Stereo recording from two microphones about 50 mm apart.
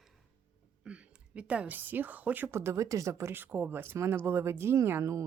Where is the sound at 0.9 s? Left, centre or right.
Right.